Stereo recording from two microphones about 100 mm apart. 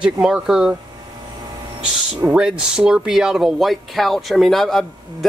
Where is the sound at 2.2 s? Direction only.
10° right (ahead or behind).